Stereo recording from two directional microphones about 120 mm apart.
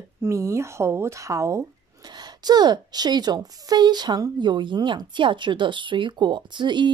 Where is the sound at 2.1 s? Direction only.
35° right (ahead or behind).